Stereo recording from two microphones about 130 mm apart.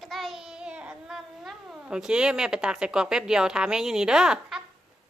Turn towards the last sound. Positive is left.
turn(degrees=-5)  # may be behind; listen again after turning